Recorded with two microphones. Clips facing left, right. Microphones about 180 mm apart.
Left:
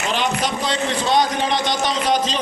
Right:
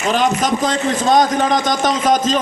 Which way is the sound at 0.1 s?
45° right (ahead or behind).